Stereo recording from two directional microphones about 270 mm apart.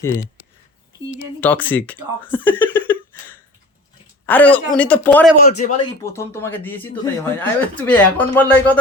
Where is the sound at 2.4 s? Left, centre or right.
Centre.